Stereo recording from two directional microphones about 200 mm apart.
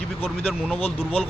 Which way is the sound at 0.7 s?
30° left (ahead or behind).